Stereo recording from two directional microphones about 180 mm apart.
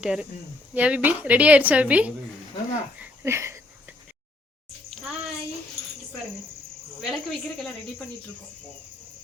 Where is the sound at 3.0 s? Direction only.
15° right (ahead or behind).